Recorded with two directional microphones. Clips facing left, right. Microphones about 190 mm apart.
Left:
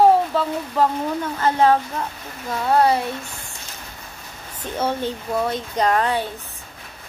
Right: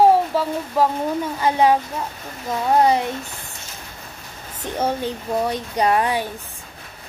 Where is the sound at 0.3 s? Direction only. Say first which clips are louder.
Right 1 dB; 10° right (ahead or behind).